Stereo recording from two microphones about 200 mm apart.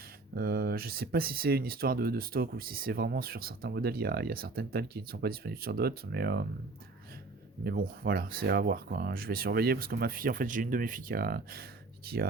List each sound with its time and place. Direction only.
0.3 s speech: 50° right (ahead or behind)
7.6 s speech: 50° right (ahead or behind)